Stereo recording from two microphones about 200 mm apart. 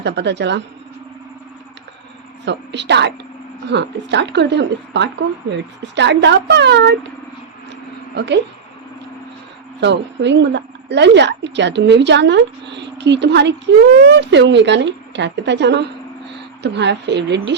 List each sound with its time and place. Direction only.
0.0 s a woman's voice: 60° right (ahead or behind)
2.4 s a woman's voice: 60° right (ahead or behind)
8.1 s a woman's voice: 55° right (ahead or behind)
9.8 s a woman's voice: 60° right (ahead or behind)